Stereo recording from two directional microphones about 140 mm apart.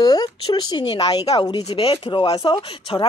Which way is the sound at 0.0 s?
30° left (ahead or behind).